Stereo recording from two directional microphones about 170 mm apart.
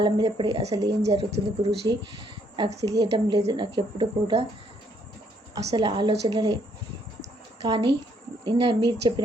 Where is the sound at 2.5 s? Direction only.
25° right (ahead or behind).